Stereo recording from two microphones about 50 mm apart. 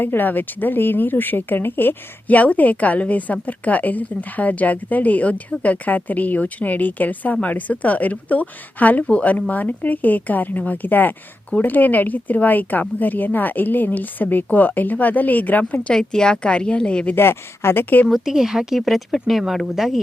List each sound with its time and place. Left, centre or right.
0.0 s speech: left
2.3 s speech: left
15.9 s a woman's voice: centre
17.2 s speech: left
18.1 s speech: centre